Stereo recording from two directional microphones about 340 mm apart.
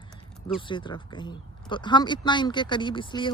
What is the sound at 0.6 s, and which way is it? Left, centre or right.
Speech, centre.